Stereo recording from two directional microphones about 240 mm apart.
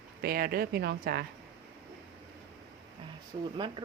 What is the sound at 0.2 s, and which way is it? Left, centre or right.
Speech, right.